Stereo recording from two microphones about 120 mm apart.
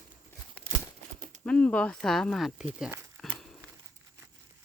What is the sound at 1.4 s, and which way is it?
Speech, 10° left (ahead or behind).